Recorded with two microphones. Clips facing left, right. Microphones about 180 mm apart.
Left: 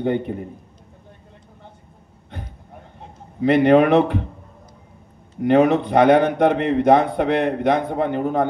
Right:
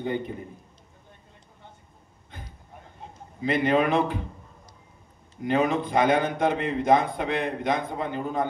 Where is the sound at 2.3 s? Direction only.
65° left (ahead or behind).